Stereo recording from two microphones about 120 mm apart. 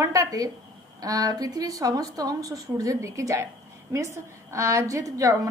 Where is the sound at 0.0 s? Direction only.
30° right (ahead or behind).